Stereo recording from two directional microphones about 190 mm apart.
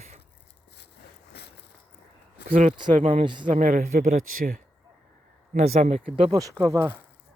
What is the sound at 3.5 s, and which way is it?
Speech, 45° right (ahead or behind).